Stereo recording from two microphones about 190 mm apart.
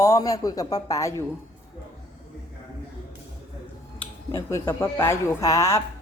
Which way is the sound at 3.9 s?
15° left (ahead or behind).